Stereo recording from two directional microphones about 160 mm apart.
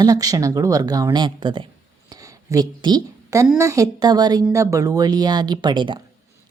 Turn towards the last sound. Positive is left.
turn(degrees=-30)  # may be behind; listen again after turning